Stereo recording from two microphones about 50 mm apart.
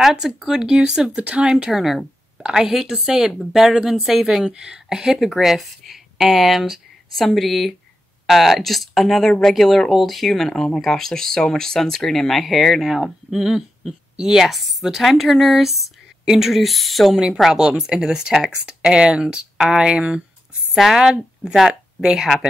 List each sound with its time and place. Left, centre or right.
0.0 s speech: centre
1.2 s speech: right
1.7 s speech: centre
12.9 s speech: centre
17.4 s speech: centre
20.7 s a woman's voice: centre